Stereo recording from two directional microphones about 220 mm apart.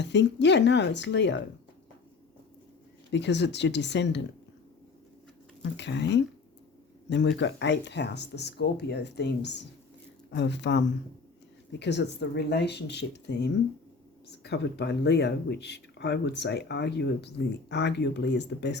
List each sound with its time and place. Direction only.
0.0 s speech: 50° left (ahead or behind)
3.1 s speech: 50° left (ahead or behind)
5.7 s speech: 50° left (ahead or behind)